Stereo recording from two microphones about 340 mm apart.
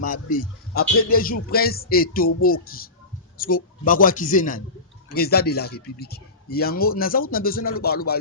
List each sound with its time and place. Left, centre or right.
0.0 s a man's voice: left